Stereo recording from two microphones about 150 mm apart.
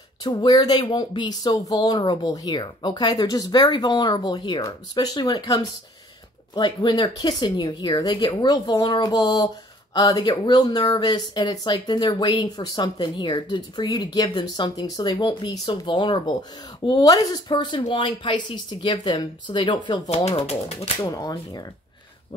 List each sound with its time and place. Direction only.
0.2 s speech: 30° left (ahead or behind)
20.3 s speech: 45° left (ahead or behind)
21.1 s speech: 25° left (ahead or behind)